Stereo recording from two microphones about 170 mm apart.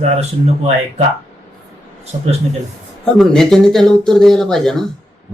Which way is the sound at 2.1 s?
40° right (ahead or behind).